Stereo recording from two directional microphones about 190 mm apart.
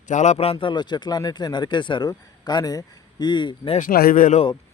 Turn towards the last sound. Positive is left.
turn(degrees=45)  # may be behind; listen again after turning